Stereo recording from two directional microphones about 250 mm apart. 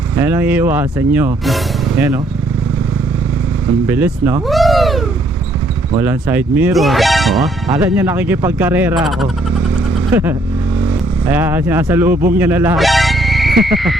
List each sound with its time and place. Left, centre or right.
0.2 s speech: centre
3.8 s speech: centre
11.3 s speech: centre